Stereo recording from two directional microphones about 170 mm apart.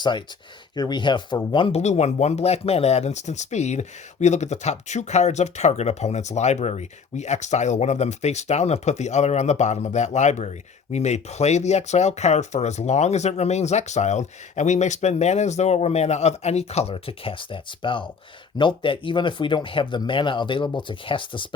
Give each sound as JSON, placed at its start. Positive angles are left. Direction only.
{"t": 0.0, "sound": "speech", "side_deg": 30}
{"t": 1.6, "sound": "speech", "side_deg": 40}